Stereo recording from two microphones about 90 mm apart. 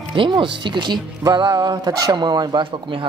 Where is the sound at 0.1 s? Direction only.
65° right (ahead or behind).